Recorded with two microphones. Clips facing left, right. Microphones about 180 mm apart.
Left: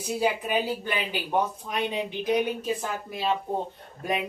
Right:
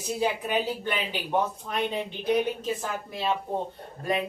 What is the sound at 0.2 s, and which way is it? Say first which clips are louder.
Speech: left 1 dB; 5° left (ahead or behind).